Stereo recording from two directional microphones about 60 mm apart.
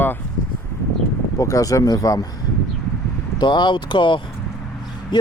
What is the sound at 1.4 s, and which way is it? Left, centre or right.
Speech, left.